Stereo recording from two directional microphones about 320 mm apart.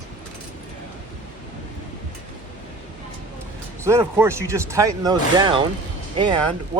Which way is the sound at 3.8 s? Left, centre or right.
Centre.